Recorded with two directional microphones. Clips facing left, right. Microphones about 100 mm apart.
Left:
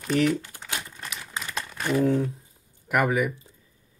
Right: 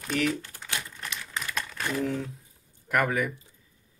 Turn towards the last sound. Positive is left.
turn(degrees=10)  # may be behind; listen again after turning